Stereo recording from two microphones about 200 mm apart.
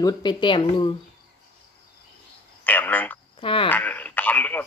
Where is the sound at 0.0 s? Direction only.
20° left (ahead or behind).